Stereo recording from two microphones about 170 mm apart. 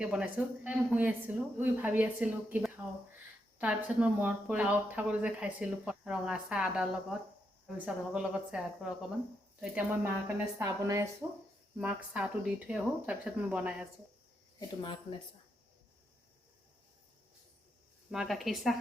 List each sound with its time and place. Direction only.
0.0 s speech: 5° right (ahead or behind)
11.8 s speech: 5° right (ahead or behind)
18.1 s speech: centre (ahead or behind)